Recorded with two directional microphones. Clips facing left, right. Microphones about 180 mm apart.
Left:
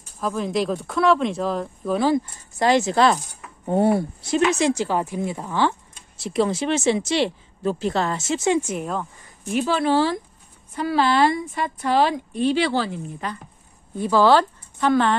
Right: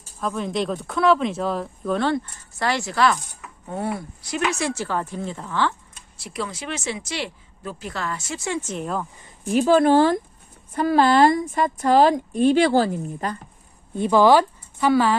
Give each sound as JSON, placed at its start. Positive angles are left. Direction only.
{"t": 0.2, "sound": "speech", "side_deg": 0}
{"t": 2.6, "sound": "speech", "side_deg": 20}
{"t": 9.5, "sound": "a woman's voice", "side_deg": -45}
{"t": 13.9, "sound": "a woman's voice", "side_deg": -20}